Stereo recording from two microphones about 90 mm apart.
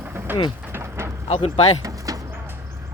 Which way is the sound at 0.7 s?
30° right (ahead or behind).